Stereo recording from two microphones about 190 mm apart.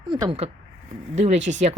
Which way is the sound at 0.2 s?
30° right (ahead or behind).